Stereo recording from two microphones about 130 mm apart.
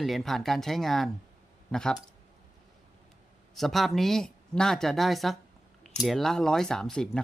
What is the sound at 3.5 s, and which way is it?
Speech, centre (ahead or behind).